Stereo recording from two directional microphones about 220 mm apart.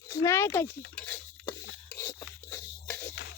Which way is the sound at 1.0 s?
10° left (ahead or behind).